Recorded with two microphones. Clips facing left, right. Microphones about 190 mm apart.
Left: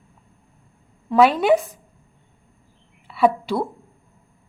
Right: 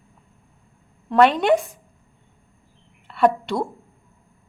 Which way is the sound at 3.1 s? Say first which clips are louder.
Even; 5° left (ahead or behind).